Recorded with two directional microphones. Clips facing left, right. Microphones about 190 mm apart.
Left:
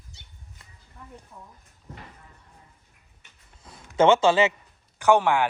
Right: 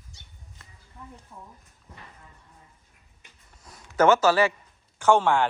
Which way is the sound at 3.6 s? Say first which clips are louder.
Left 1 dB; 25° left (ahead or behind).